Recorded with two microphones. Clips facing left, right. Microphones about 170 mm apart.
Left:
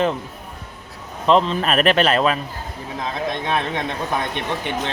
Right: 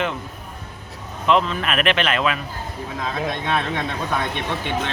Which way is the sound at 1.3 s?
35° left (ahead or behind).